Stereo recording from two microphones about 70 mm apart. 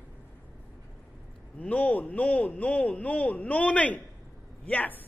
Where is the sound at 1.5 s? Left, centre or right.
Left.